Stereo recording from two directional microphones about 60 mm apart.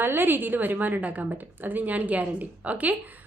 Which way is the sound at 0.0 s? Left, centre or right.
Right.